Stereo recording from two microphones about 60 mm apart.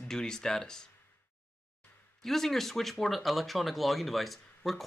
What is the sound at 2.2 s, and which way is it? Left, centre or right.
Speech, centre.